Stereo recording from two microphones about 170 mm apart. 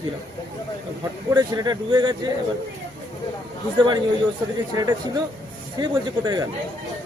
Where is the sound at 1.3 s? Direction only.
20° right (ahead or behind).